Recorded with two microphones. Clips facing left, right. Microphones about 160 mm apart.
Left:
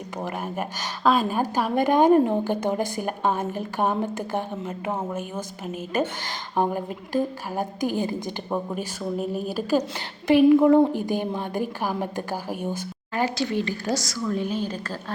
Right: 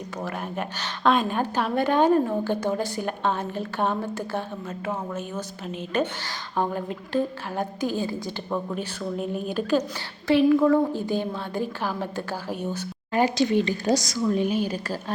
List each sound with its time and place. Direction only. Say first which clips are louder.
0.3 s a woman's voice: left 1 dB; 5° left (ahead or behind)
8.7 s a woman's voice: left 1 dB; 5° left (ahead or behind)
13.1 s a woman's voice: right 4 dB; 20° right (ahead or behind)